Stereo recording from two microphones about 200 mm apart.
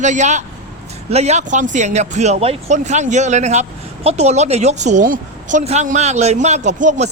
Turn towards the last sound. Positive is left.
turn(degrees=-35)  # may be behind; listen again after turning